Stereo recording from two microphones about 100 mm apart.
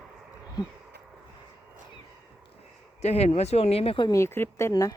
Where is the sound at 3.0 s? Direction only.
90° left; by 4.1 s 65° left (ahead or behind).